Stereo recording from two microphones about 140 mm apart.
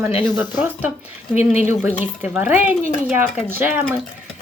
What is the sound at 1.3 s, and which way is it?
Speech, 50° left (ahead or behind).